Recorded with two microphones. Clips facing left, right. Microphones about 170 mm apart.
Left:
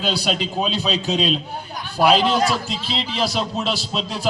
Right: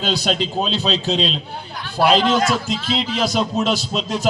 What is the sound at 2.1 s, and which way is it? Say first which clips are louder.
Speech: right 1 dB; 5° left (ahead or behind).